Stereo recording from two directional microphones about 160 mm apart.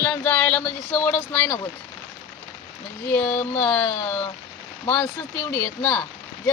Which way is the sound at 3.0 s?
10° left (ahead or behind).